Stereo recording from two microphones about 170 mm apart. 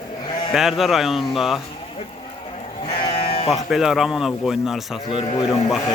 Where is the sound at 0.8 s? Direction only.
Centre (ahead or behind).